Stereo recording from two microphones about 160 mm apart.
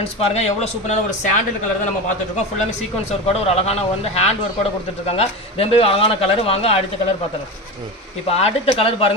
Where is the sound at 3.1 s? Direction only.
40° left (ahead or behind).